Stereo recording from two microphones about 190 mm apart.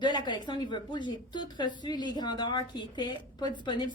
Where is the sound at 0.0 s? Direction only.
25° left (ahead or behind).